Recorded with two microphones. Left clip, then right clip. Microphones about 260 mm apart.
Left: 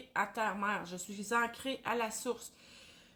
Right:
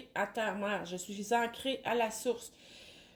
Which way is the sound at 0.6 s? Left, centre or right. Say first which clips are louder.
Even; left.